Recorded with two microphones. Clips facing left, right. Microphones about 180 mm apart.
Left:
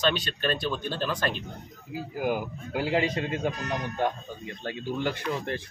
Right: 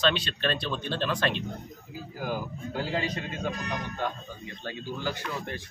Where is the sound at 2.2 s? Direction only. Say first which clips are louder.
Left 3 dB; 15° left (ahead or behind).